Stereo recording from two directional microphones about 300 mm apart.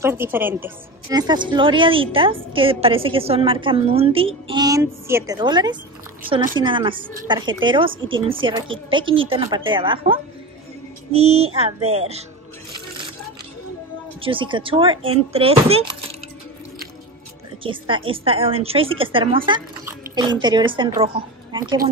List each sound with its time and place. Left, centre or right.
0.0 s a woman's voice: centre
7.0 s speech: right
7.2 s a woman's voice: centre
14.2 s a woman's voice: centre
17.6 s a woman's voice: centre